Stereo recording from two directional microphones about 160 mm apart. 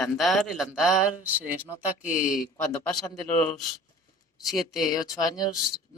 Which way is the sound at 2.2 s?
60° left (ahead or behind).